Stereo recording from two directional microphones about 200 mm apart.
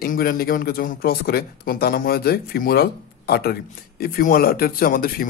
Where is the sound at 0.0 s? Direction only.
45° left (ahead or behind).